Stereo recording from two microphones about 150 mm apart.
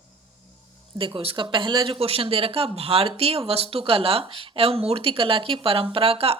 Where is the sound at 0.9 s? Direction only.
35° right (ahead or behind).